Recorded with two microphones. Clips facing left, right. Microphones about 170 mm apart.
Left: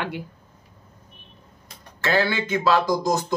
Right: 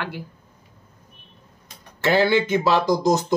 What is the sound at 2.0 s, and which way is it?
Speech, 20° right (ahead or behind).